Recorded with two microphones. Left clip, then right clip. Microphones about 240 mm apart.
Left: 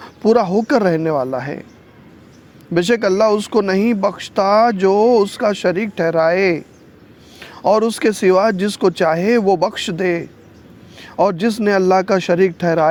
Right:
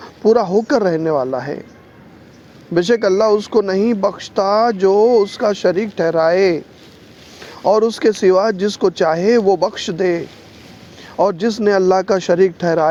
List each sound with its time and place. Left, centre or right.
0.0 s speech: left
2.7 s speech: left